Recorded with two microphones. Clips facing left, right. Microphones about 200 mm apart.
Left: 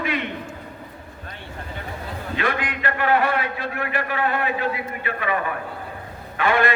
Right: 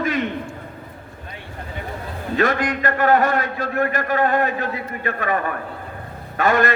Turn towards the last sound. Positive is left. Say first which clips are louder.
# right 2 dB
turn(degrees=-40)  # may be behind; listen again after turning